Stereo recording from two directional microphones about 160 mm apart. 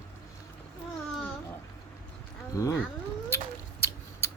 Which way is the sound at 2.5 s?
20° left (ahead or behind).